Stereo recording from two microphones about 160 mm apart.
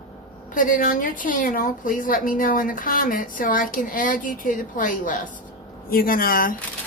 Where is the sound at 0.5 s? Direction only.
55° left (ahead or behind).